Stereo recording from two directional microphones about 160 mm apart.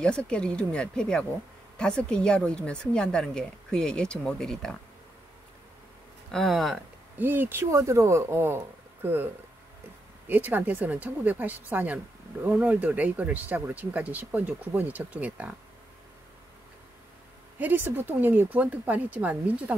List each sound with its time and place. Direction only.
0.0 s a woman's voice: 5° left (ahead or behind)
6.3 s a woman's voice: centre (ahead or behind)
7.2 s speech: 15° right (ahead or behind)
17.6 s speech: 10° right (ahead or behind)